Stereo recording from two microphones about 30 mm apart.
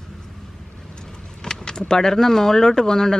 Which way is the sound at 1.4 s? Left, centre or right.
Left.